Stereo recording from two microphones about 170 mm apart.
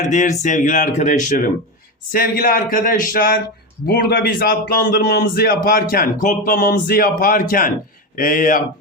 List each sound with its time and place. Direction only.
0.1 s speech: 45° left (ahead or behind)
2.1 s a man's voice: 60° left (ahead or behind)